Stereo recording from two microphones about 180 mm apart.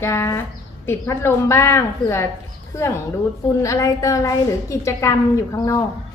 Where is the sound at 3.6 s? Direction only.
20° left (ahead or behind).